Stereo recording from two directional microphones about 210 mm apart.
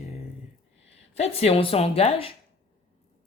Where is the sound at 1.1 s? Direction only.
30° left (ahead or behind).